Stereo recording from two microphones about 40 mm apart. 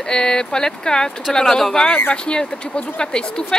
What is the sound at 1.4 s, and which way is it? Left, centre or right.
Speech, centre.